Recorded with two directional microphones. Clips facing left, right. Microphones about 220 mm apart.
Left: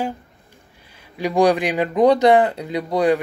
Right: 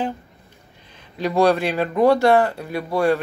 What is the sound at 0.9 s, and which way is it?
Speech, 10° left (ahead or behind).